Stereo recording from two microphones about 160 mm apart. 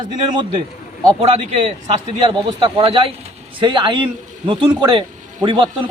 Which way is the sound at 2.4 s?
35° right (ahead or behind).